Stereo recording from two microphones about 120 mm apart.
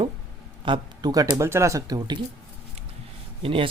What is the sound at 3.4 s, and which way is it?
Speech, 50° right (ahead or behind).